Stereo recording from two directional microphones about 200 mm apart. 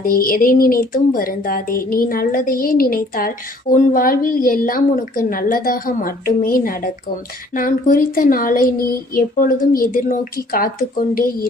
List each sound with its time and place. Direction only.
0.0 s speech: 45° left (ahead or behind)